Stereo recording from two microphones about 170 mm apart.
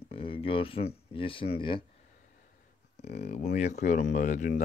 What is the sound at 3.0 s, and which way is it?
Speech, 40° left (ahead or behind).